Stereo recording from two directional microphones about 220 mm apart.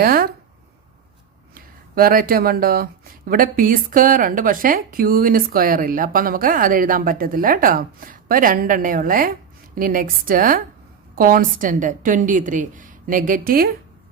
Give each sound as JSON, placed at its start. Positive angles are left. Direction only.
{"t": 0.0, "sound": "speech", "side_deg": -40}
{"t": 1.5, "sound": "speech", "side_deg": -40}